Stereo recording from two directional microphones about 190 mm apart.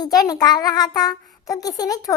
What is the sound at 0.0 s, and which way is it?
A child's voice, 20° left (ahead or behind).